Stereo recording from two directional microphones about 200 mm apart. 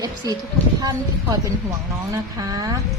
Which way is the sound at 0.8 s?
20° right (ahead or behind).